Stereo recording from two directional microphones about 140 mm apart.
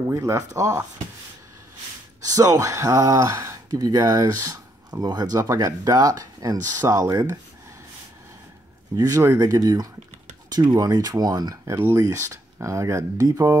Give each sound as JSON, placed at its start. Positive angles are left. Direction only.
{"t": 0.1, "sound": "speech", "side_deg": -20}
{"t": 2.2, "sound": "speech", "side_deg": -25}
{"t": 8.9, "sound": "speech", "side_deg": -25}